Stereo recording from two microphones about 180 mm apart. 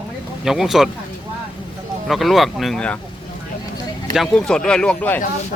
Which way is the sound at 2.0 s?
Centre (ahead or behind).